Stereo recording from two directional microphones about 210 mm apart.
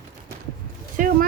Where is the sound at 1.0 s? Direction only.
40° right (ahead or behind).